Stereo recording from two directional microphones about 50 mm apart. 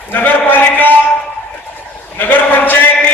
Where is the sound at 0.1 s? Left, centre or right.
Left.